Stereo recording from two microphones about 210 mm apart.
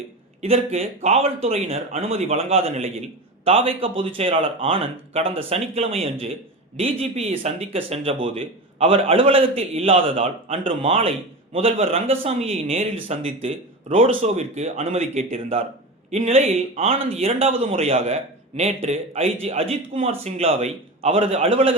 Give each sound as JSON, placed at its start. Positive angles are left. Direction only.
{"t": 0.4, "sound": "speech", "side_deg": -30}